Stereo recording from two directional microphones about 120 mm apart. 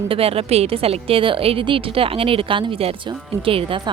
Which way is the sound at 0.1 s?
55° right (ahead or behind).